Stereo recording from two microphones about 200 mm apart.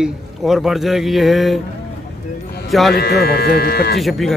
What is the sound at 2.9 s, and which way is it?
Speech, 50° left (ahead or behind).